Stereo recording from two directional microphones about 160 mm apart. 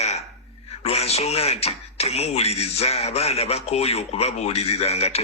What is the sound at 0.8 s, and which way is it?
Speech, 40° left (ahead or behind).